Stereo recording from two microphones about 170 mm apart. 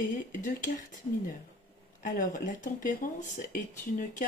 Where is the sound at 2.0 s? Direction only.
50° left (ahead or behind).